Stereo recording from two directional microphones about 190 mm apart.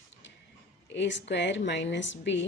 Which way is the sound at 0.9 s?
70° left (ahead or behind).